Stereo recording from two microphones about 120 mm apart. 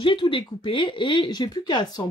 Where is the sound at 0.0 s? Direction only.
45° left (ahead or behind).